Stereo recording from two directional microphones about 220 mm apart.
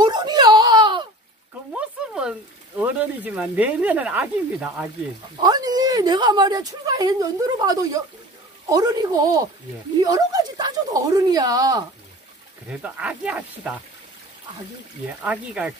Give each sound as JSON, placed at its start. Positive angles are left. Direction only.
{"t": 0.0, "sound": "wail", "side_deg": -20}
{"t": 1.7, "sound": "a sound", "side_deg": -5}
{"t": 2.8, "sound": "speech", "side_deg": -5}
{"t": 5.4, "sound": "a woman's voice", "side_deg": -20}
{"t": 12.6, "sound": "speech", "side_deg": -5}
{"t": 15.2, "sound": "speech", "side_deg": -5}